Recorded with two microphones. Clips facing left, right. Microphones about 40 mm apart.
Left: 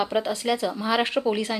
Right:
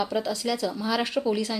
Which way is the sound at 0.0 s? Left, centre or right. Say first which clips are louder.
Left 2 dB; left.